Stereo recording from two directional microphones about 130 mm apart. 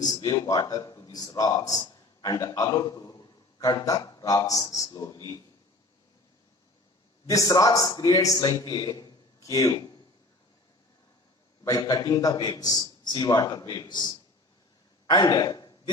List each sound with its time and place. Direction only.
0.0 s a man's voice: 30° left (ahead or behind)
7.3 s a man's voice: 30° left (ahead or behind)
11.6 s a man's voice: 30° left (ahead or behind)
15.0 s a sound: 30° left (ahead or behind)